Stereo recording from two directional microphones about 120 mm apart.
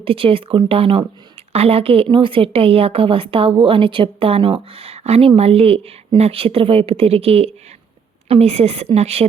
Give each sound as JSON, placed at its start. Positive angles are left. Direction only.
{"t": 0.0, "sound": "a woman's voice", "side_deg": -50}